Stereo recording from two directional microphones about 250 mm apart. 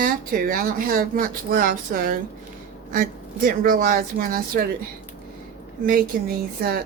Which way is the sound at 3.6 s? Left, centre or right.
Right.